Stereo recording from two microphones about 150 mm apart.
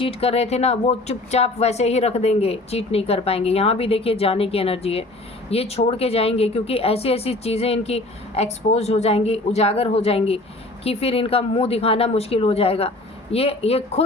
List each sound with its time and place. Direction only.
0.0 s speech: 40° left (ahead or behind)